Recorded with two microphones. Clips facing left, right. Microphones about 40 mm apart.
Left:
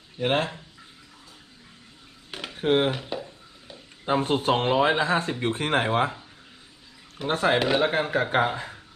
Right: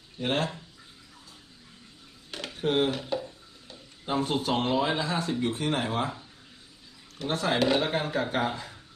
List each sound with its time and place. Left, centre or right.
0.2 s speech: left
2.3 s a sound: centre
2.6 s speech: left
3.0 s a sound: centre
4.0 s speech: left
7.2 s speech: left
7.5 s speech: centre; by 8.7 s left